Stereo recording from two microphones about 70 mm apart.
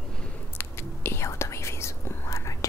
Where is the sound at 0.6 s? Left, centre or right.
Left.